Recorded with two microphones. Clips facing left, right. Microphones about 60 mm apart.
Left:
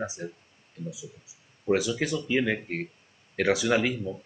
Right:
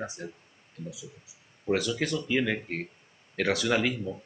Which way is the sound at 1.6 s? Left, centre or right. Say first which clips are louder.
Left 2 dB; centre.